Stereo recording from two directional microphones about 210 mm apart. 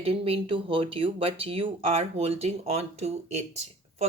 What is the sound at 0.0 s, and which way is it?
Speech, 25° right (ahead or behind).